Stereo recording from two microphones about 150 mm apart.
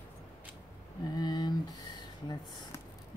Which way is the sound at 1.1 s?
30° left (ahead or behind).